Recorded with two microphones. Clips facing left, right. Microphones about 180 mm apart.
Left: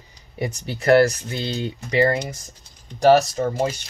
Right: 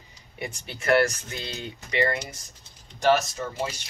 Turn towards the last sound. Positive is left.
turn(degrees=45)  # may be behind; listen again after turning